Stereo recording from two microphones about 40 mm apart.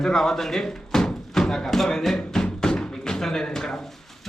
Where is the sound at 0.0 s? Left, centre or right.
Centre.